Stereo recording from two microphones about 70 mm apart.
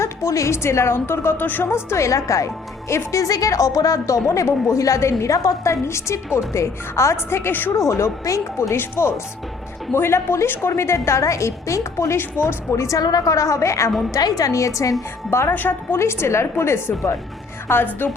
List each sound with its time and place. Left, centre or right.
0.0 s a woman's voice: left
14.1 s a woman's voice: left
15.3 s a woman's voice: left